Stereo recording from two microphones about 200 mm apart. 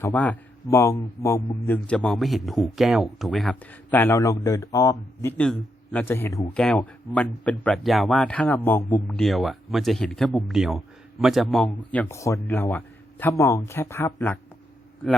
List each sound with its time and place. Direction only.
0.0 s a man's voice: 5° left (ahead or behind)
5.4 s a man's voice: 5° left (ahead or behind)